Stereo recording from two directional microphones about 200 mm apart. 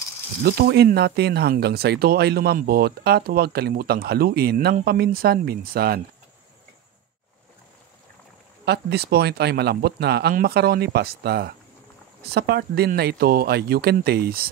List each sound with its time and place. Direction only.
0.4 s speech: 50° right (ahead or behind)
8.6 s speech: 55° right (ahead or behind)